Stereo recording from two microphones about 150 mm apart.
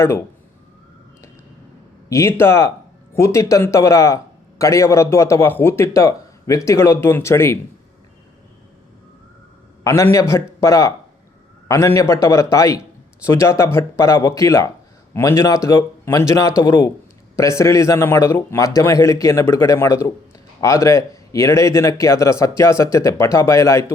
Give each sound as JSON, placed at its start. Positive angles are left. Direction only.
{"t": 0.0, "sound": "speech", "side_deg": 20}
{"t": 2.0, "sound": "a man's voice", "side_deg": 20}
{"t": 9.8, "sound": "a man's voice", "side_deg": 20}